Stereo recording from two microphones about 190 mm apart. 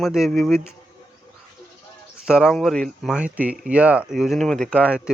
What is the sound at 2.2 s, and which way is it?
Speech, centre (ahead or behind).